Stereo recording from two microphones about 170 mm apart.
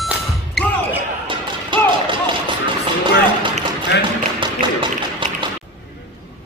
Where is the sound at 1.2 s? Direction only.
30° right (ahead or behind).